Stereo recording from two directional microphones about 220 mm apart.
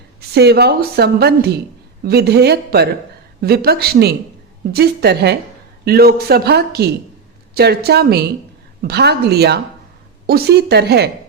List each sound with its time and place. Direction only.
0.3 s a woman's voice: 50° right (ahead or behind)